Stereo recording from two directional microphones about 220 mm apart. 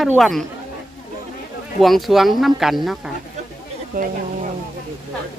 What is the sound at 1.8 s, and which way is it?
Speech, centre (ahead or behind).